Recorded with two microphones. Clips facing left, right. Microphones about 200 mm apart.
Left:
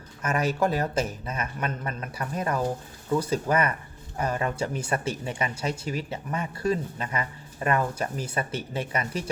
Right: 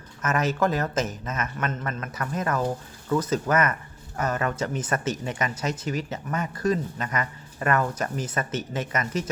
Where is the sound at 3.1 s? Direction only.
10° left (ahead or behind).